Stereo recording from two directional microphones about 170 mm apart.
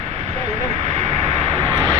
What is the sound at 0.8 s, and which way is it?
Vehicle, 40° right (ahead or behind).